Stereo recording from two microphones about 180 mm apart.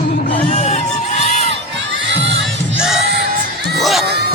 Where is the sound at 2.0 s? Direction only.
80° right.